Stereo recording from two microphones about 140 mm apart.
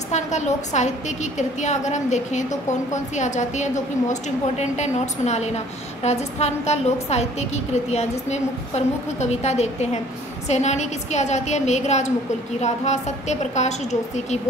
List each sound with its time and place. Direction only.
0.1 s a woman's voice: 55° left (ahead or behind)